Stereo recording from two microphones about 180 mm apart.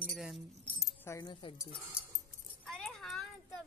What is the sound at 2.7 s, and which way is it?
Music, centre (ahead or behind).